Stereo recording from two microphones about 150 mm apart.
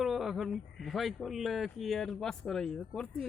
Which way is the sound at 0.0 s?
Centre (ahead or behind).